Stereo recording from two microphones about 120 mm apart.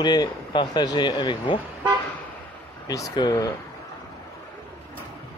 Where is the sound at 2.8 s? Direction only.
30° left (ahead or behind).